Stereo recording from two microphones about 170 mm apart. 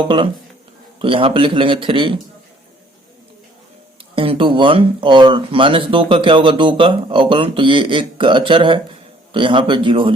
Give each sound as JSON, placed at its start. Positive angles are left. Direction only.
{"t": 0.0, "sound": "a man's voice", "side_deg": -30}
{"t": 4.1, "sound": "speech", "side_deg": -30}